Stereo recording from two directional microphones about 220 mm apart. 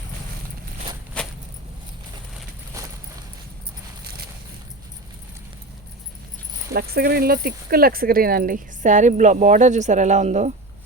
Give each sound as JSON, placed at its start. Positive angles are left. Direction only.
{"t": 1.2, "sound": "a sound", "side_deg": 5}
{"t": 2.8, "sound": "clip-clop", "side_deg": -15}
{"t": 6.7, "sound": "speech", "side_deg": -45}